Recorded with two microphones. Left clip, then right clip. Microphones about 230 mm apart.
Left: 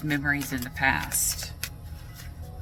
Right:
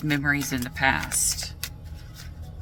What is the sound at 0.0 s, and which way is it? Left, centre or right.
Speech, right.